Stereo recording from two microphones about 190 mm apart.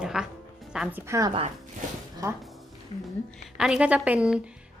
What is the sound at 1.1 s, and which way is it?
Speech, 15° right (ahead or behind).